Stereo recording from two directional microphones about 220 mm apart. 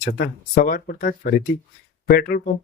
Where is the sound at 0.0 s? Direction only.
40° left (ahead or behind).